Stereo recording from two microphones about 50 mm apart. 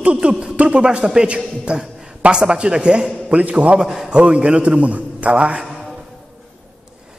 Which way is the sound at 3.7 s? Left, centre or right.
Centre.